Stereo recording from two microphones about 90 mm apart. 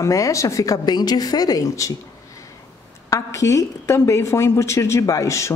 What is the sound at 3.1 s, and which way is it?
A woman's voice, 35° left (ahead or behind).